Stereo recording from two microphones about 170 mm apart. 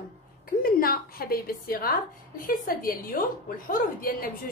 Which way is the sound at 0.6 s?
60° left (ahead or behind).